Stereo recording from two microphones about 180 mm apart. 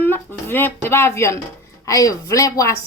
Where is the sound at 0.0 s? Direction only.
10° left (ahead or behind).